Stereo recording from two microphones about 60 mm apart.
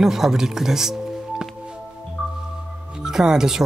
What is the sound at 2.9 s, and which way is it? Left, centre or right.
Speech, centre.